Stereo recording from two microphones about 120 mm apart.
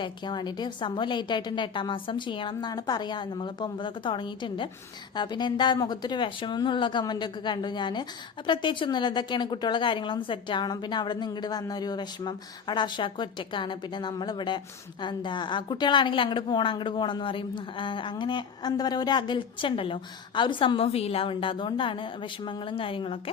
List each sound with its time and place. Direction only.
0.0 s a woman's voice: 40° left (ahead or behind)